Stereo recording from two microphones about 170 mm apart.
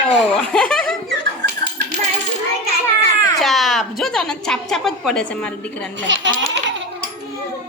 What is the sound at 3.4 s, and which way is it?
A woman's voice, centre (ahead or behind).